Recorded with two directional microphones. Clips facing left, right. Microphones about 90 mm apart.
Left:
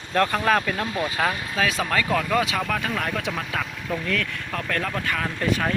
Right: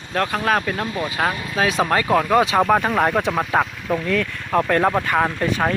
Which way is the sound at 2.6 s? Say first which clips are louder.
Right 9 dB; 40° right (ahead or behind).